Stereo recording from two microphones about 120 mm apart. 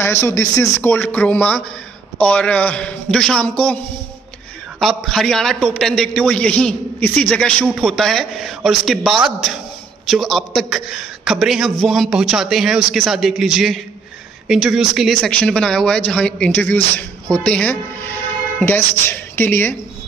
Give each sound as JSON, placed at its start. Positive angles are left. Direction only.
{"t": 0.0, "sound": "a man's voice", "side_deg": 20}